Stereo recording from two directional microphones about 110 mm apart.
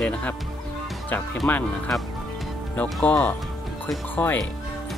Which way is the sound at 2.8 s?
10° left (ahead or behind).